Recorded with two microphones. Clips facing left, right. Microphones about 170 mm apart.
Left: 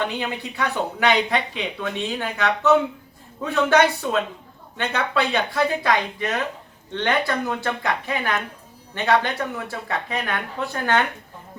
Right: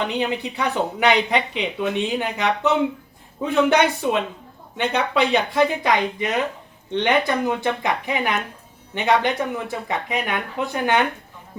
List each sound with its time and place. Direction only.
0.2 s speech: 15° right (ahead or behind)